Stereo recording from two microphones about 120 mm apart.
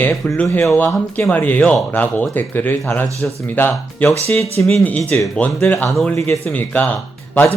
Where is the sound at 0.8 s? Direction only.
20° left (ahead or behind).